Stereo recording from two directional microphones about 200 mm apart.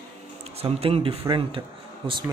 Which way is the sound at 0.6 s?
30° right (ahead or behind).